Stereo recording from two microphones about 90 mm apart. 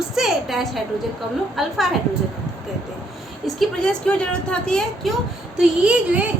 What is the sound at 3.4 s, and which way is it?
A woman's voice, 5° left (ahead or behind).